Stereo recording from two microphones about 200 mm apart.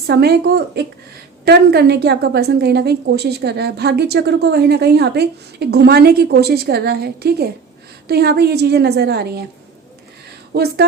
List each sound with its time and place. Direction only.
0.1 s a woman's voice: 55° right (ahead or behind)
10.5 s a woman's voice: 55° right (ahead or behind)